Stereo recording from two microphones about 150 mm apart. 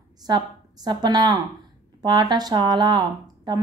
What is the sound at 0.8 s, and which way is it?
Speech, 25° right (ahead or behind).